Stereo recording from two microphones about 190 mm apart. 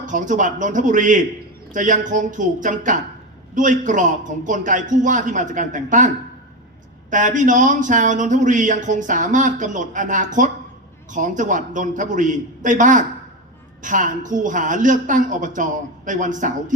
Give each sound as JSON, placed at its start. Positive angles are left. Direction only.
{"t": 0.0, "sound": "a woman's voice", "side_deg": -40}
{"t": 7.1, "sound": "a woman's voice", "side_deg": -40}